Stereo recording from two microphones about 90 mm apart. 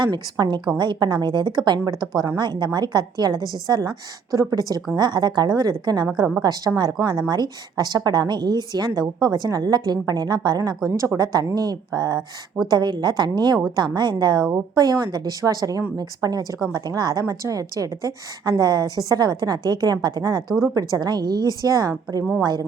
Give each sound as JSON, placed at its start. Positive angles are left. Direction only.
{"t": 0.0, "sound": "a woman's voice", "side_deg": -60}
{"t": 10.8, "sound": "a woman's voice", "side_deg": -40}
{"t": 12.7, "sound": "a woman's voice", "side_deg": -55}
{"t": 22.2, "sound": "a woman's voice", "side_deg": 0}